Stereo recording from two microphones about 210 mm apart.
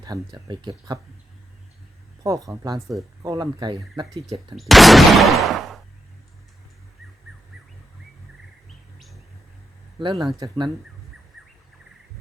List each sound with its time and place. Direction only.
0.0 s speech: 20° right (ahead or behind)
2.2 s speech: 15° right (ahead or behind)
4.5 s speech: centre (ahead or behind)
10.0 s speech: 25° right (ahead or behind)